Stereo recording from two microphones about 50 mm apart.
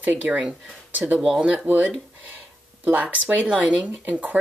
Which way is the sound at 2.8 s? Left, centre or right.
Right.